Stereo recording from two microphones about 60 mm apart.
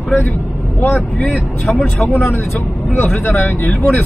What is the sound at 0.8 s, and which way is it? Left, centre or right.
Speech, left.